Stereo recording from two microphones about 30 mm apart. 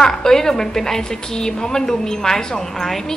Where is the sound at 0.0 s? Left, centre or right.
Centre.